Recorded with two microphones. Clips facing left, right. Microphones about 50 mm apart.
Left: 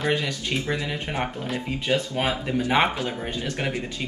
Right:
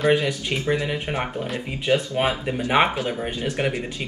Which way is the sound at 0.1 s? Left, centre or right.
Right.